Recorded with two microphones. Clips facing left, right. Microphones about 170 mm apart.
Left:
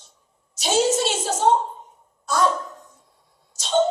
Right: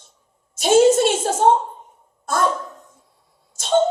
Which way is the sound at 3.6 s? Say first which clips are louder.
Right 3 dB; 55° right (ahead or behind).